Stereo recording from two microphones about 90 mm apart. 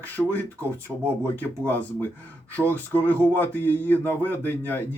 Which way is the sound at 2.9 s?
20° left (ahead or behind).